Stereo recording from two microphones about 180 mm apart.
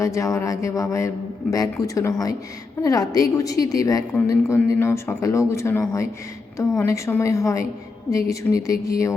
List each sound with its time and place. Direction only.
0.0 s a woman's voice: 15° left (ahead or behind)